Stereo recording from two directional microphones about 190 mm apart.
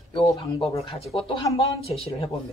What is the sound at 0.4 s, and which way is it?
Speech, 30° left (ahead or behind).